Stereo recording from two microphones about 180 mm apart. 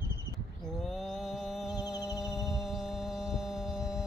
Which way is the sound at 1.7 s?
20° left (ahead or behind).